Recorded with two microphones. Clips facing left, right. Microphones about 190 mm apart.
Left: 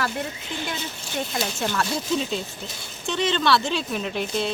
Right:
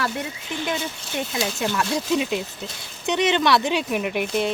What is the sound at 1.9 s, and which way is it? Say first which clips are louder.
Speech: right 3 dB; 15° right (ahead or behind).